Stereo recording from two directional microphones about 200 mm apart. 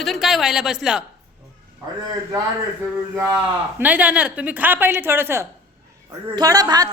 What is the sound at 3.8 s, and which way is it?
A woman's voice, 5° right (ahead or behind).